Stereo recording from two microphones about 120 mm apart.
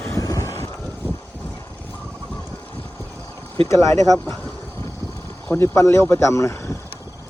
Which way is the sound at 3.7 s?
25° left (ahead or behind).